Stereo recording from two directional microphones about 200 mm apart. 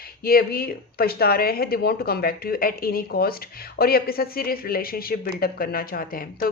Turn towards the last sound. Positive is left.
turn(degrees=45)  # may be behind; listen again after turning